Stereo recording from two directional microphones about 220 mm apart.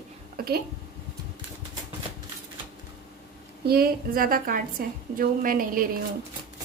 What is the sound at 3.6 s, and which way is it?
Speech, 45° right (ahead or behind).